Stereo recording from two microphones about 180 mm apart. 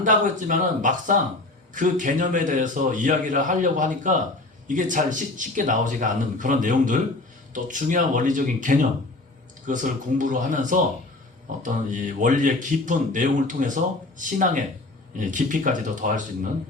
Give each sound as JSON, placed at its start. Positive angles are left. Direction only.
{"t": 0.0, "sound": "a man's voice", "side_deg": -45}